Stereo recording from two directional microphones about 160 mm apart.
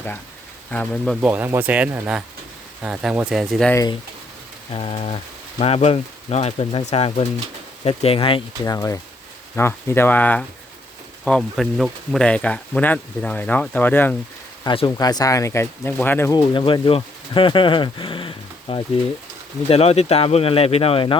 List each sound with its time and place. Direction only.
0.7 s speech: 5° left (ahead or behind)
1.2 s speech: 10° right (ahead or behind)
4.7 s speech: 35° left (ahead or behind)
8.6 s speech: 20° left (ahead or behind)
14.6 s speech: 30° left (ahead or behind); by 16.3 s 15° left (ahead or behind)
16.3 s speech: 30° left (ahead or behind)